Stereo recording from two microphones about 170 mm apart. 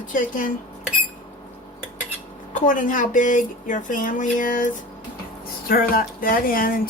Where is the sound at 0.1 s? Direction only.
50° left (ahead or behind).